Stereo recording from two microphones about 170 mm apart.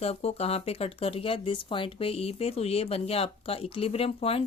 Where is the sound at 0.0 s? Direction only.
35° left (ahead or behind).